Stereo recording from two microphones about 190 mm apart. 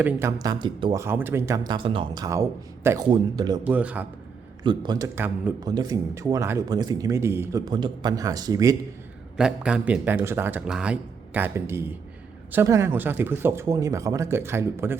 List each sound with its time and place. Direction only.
0.0 s speech: 10° right (ahead or behind)
1.0 s speech: 10° right (ahead or behind)
3.6 s speech: 5° right (ahead or behind)
4.6 s speech: 25° right (ahead or behind)
9.4 s speech: 5° right (ahead or behind)